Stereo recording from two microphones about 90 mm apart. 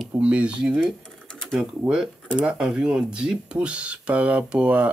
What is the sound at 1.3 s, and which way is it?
Typing, 10° left (ahead or behind).